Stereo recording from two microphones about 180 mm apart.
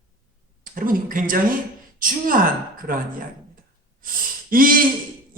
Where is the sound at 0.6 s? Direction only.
50° right (ahead or behind).